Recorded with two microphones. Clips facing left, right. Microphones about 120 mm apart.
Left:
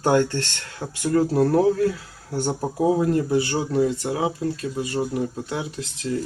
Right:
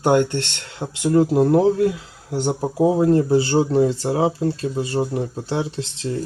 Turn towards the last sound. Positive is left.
turn(degrees=-30)  # may be behind; listen again after turning